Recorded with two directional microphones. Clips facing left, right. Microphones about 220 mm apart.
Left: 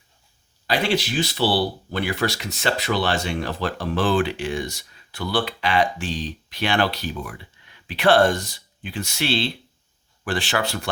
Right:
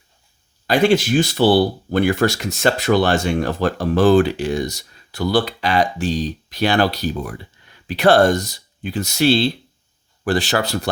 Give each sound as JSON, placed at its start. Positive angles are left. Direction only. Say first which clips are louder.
{"t": 0.7, "sound": "speech", "louder": "right 8 dB", "side_deg": -45}